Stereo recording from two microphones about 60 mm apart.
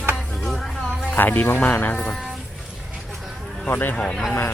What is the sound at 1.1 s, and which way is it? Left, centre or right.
Speech, left.